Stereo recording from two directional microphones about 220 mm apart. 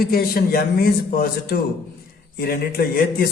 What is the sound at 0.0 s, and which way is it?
A man's voice, 40° left (ahead or behind).